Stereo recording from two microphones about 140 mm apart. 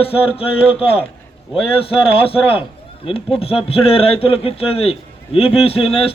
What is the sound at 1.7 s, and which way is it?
A man's voice, 40° left (ahead or behind).